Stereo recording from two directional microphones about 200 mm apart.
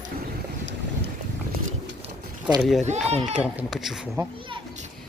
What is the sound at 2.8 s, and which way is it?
Speech, 35° right (ahead or behind).